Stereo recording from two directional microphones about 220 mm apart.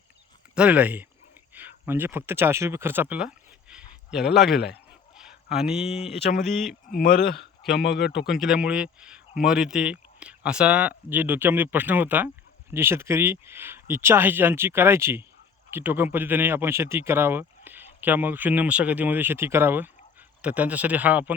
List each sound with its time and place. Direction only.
0.5 s speech: 5° right (ahead or behind)
3.7 s a sound: 5° right (ahead or behind)
5.8 s speech: 30° left (ahead or behind)
6.5 s speech: centre (ahead or behind)
6.8 s speech: 40° left (ahead or behind)
7.6 s speech: centre (ahead or behind)
7.9 s speech: 50° left (ahead or behind)
8.3 s speech: 5° right (ahead or behind)